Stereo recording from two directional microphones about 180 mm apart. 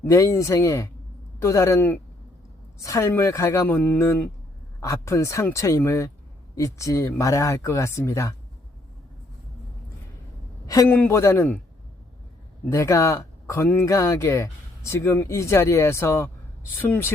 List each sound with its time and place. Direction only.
0.0 s speech: 15° left (ahead or behind)
10.7 s speech: 15° left (ahead or behind)
12.6 s speech: 15° left (ahead or behind)